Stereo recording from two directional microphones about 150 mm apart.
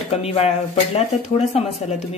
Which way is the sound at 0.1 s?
40° left (ahead or behind).